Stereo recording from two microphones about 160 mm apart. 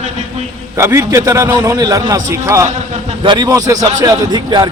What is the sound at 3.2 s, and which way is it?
A man's voice, 25° right (ahead or behind).